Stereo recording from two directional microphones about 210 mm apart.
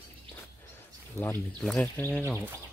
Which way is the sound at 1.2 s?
5° left (ahead or behind).